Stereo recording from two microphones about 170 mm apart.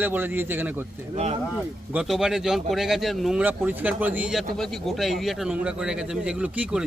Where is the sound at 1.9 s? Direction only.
5° right (ahead or behind).